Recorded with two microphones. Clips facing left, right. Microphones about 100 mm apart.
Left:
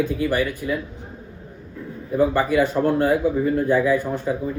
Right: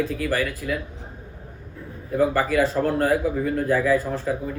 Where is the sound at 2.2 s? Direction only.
25° left (ahead or behind).